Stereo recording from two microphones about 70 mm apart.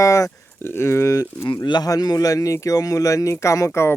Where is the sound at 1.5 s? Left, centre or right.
Left.